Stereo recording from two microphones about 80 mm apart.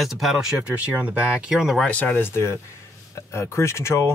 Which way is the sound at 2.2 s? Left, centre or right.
Left.